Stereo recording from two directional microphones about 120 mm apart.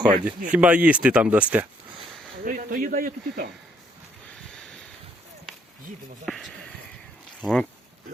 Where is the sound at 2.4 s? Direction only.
90° right.